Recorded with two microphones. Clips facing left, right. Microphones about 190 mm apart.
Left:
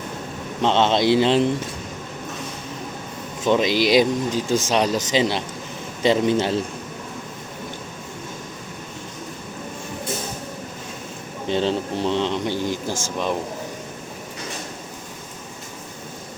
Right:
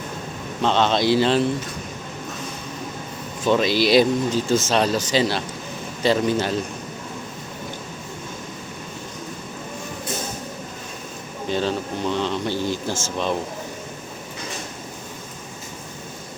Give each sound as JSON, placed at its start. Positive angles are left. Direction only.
{"t": 0.6, "sound": "a man's voice", "side_deg": 20}
{"t": 3.4, "sound": "a man's voice", "side_deg": 15}
{"t": 11.4, "sound": "a man's voice", "side_deg": 25}